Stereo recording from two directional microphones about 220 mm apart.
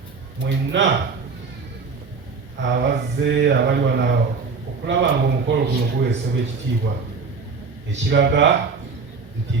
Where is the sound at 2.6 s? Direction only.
50° right (ahead or behind).